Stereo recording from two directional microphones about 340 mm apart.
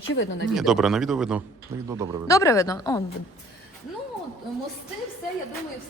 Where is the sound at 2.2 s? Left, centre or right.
Centre.